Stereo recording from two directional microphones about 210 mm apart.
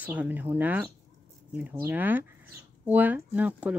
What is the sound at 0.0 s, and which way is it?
Speech, 5° right (ahead or behind).